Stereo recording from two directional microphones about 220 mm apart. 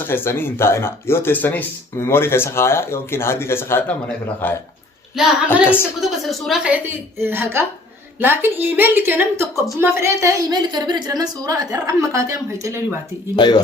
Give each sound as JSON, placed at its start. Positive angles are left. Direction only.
{"t": 0.0, "sound": "a woman's voice", "side_deg": 10}
{"t": 5.6, "sound": "a woman's voice", "side_deg": 10}
{"t": 13.3, "sound": "speech", "side_deg": 20}